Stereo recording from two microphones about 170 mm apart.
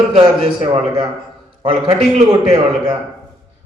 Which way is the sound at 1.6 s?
30° right (ahead or behind).